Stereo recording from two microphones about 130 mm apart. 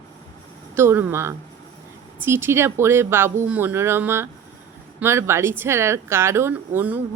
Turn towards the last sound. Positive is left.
turn(degrees=-15)  # may be behind; listen again after turning